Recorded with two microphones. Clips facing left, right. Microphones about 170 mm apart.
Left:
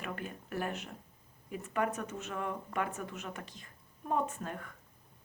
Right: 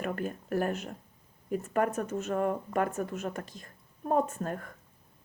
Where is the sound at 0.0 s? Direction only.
45° right (ahead or behind).